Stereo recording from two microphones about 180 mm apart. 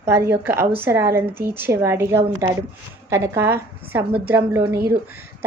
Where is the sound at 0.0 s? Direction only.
15° right (ahead or behind).